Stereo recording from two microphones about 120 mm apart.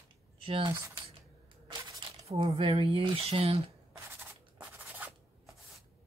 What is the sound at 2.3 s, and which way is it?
Speech, 45° right (ahead or behind).